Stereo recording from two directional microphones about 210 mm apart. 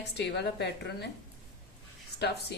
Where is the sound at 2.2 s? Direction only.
50° left (ahead or behind).